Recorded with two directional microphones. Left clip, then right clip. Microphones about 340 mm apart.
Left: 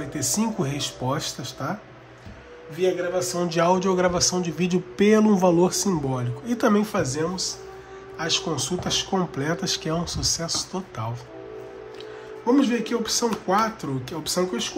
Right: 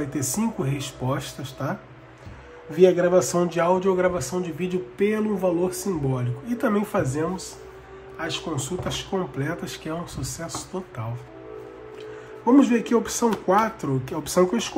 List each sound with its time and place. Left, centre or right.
0.1 s speech: centre
2.8 s a man's voice: centre
12.4 s speech: centre